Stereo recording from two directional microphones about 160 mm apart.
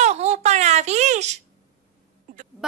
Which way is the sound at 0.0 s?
45° right (ahead or behind).